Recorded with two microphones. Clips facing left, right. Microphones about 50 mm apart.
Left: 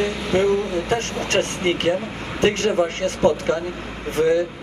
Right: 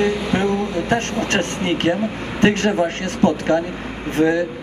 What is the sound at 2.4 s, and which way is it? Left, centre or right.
A man's voice, right.